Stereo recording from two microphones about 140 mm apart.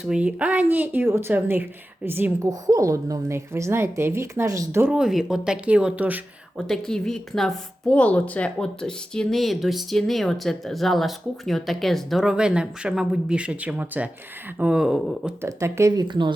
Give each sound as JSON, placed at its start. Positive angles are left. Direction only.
{"t": 0.0, "sound": "speech", "side_deg": -5}
{"t": 4.9, "sound": "speech", "side_deg": -5}
{"t": 6.7, "sound": "speech", "side_deg": 5}
{"t": 15.4, "sound": "speech", "side_deg": -20}